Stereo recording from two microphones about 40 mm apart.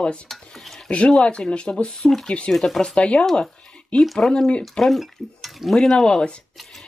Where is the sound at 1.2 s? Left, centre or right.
Left.